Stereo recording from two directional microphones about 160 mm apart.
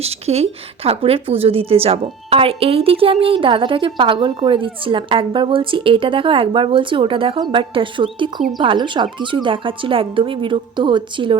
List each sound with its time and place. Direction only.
0.0 s a woman's voice: 40° right (ahead or behind)